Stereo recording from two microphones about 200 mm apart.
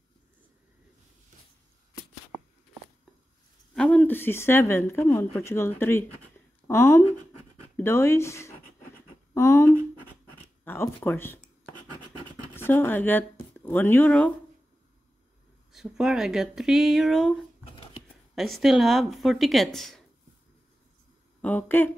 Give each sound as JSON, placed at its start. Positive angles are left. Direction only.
{"t": 3.7, "sound": "speech", "side_deg": 5}
{"t": 9.3, "sound": "a sound", "side_deg": 15}
{"t": 13.7, "sound": "speech", "side_deg": 10}
{"t": 15.7, "sound": "speech", "side_deg": 0}
{"t": 17.6, "sound": "a sound", "side_deg": 25}
{"t": 18.3, "sound": "speech", "side_deg": 0}
{"t": 21.4, "sound": "speech", "side_deg": 10}